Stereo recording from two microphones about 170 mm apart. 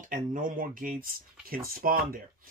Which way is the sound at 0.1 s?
50° right (ahead or behind).